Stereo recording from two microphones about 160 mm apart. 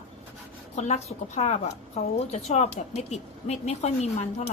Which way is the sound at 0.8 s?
45° left (ahead or behind).